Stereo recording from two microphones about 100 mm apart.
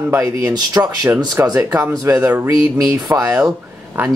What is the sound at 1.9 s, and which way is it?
Speech, 35° right (ahead or behind).